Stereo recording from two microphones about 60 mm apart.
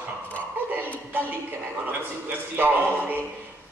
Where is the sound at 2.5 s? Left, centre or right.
Right.